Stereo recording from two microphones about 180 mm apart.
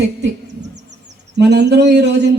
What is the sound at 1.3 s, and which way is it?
Speech, 70° right (ahead or behind).